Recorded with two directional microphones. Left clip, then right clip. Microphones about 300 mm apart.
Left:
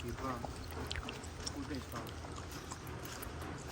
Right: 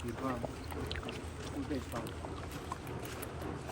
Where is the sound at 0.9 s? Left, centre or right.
Centre.